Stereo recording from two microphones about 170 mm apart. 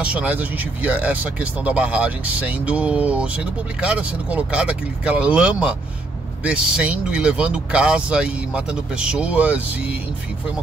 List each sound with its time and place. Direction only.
0.0 s speech: 5° right (ahead or behind)